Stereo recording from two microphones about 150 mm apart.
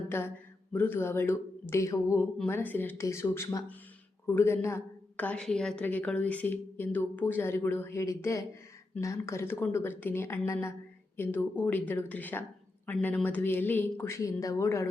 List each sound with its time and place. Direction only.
0.1 s a woman's voice: 15° left (ahead or behind)